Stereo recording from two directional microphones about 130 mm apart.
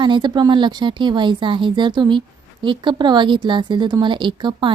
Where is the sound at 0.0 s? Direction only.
35° right (ahead or behind).